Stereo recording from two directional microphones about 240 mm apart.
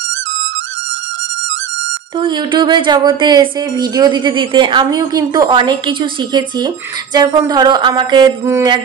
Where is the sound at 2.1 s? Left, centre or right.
Centre.